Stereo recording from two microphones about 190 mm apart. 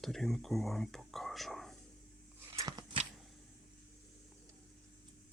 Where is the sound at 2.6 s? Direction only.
20° right (ahead or behind).